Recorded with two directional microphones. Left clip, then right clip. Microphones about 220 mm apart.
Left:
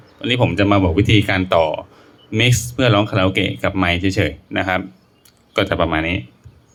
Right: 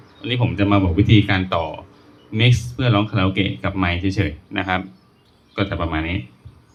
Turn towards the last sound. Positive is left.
turn(degrees=35)  # may be behind; listen again after turning